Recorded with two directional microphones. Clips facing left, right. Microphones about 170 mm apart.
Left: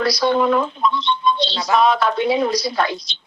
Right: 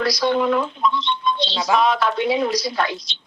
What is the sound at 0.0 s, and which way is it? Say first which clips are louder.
A woman's voice: left 2 dB; 35° left (ahead or behind).